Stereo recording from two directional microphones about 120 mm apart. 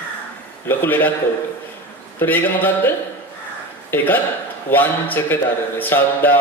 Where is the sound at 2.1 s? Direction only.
15° left (ahead or behind).